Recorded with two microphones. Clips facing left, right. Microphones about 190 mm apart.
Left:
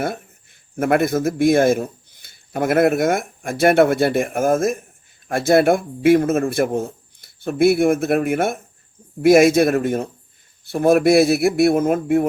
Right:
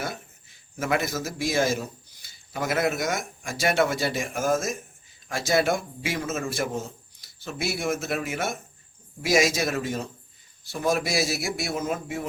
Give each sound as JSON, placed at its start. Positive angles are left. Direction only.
{"t": 0.0, "sound": "a man's voice", "side_deg": 55}